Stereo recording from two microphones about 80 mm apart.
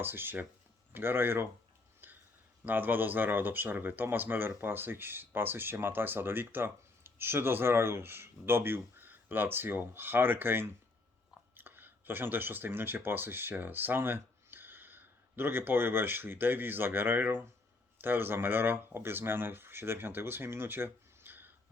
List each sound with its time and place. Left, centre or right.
0.0 s speech: right
2.6 s speech: right